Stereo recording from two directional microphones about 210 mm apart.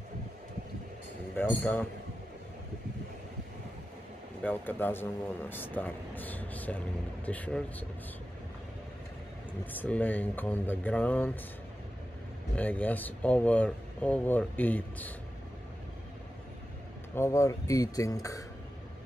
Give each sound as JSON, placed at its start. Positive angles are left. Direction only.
{"t": 1.3, "sound": "a man's voice", "side_deg": 10}
{"t": 4.4, "sound": "a man's voice", "side_deg": 10}
{"t": 9.7, "sound": "a man's voice", "side_deg": 10}
{"t": 12.5, "sound": "a man's voice", "side_deg": 10}
{"t": 17.1, "sound": "a man's voice", "side_deg": 15}